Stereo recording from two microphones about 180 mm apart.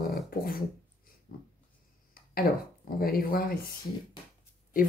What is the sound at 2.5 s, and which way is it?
Speech, 55° left (ahead or behind).